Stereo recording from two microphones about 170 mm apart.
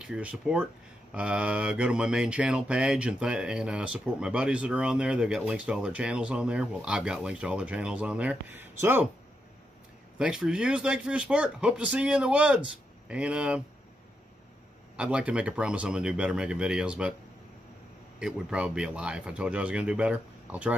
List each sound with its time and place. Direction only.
0.0 s speech: 5° right (ahead or behind)
1.1 s mantra: 5° right (ahead or behind)
10.1 s speech: 5° right (ahead or behind)
15.0 s mantra: 5° right (ahead or behind)
18.2 s speech: 5° right (ahead or behind)